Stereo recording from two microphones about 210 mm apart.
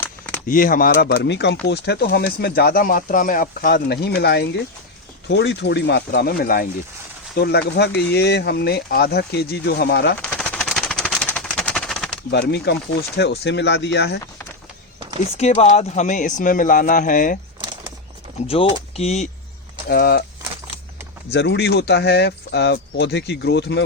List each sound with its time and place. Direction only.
0.4 s speech: 40° left (ahead or behind)
10.2 s machine gun: 5° left (ahead or behind)
12.3 s speech: 50° left (ahead or behind)
15.4 s speech: 30° left (ahead or behind)
18.4 s speech: 25° left (ahead or behind)
19.9 s speech: 50° left (ahead or behind)
21.3 s speech: 55° left (ahead or behind)